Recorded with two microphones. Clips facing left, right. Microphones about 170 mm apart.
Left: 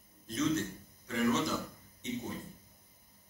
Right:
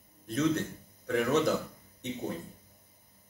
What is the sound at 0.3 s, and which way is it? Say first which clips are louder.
A man's voice: right 3 dB; 65° right (ahead or behind).